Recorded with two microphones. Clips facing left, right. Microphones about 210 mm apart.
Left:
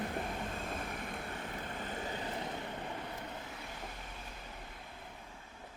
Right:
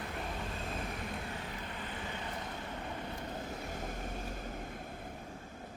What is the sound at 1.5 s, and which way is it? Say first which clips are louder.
Vehicle: left 2 dB; 45° left (ahead or behind).